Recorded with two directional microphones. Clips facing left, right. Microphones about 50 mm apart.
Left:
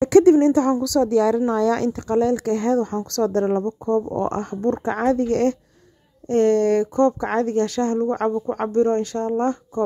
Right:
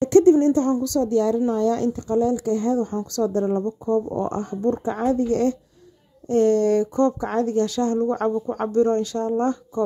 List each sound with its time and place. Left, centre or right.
0.2 s a woman's voice: left